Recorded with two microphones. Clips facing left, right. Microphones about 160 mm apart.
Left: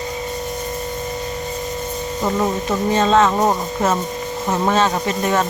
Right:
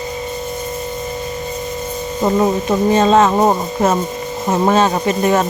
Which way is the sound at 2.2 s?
20° right (ahead or behind).